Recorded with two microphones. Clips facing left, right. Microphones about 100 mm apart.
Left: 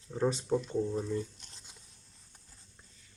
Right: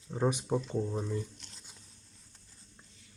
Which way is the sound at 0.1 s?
15° right (ahead or behind).